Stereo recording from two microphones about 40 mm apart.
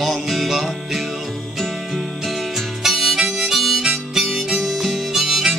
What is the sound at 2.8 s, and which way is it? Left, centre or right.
Harmonica, centre.